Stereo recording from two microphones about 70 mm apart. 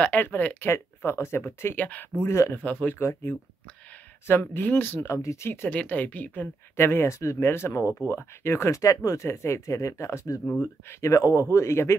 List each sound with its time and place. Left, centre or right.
0.0 s speech: left
0.7 s speech: left
2.2 s speech: left
2.6 s speech: left
3.0 s speech: left
4.6 s speech: left
5.7 s speech: left
6.8 s speech: left